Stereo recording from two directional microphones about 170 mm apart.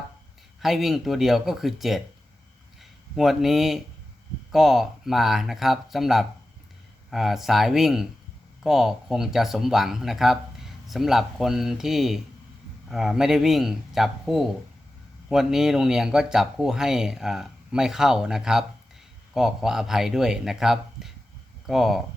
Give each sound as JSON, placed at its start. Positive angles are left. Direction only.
{"t": 0.6, "sound": "speech", "side_deg": 0}
{"t": 3.2, "sound": "speech", "side_deg": 0}